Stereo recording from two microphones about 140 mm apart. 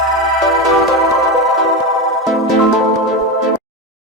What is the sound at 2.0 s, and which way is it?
Music, centre (ahead or behind).